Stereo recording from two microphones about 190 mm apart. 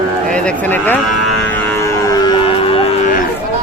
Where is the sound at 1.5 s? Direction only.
10° left (ahead or behind); by 3.1 s 30° left (ahead or behind).